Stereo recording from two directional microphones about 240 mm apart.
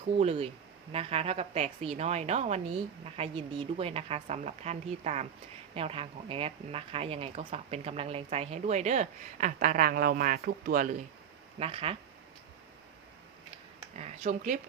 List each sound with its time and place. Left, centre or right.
0.2 s speech: right
11.6 s speech: right
13.9 s speech: right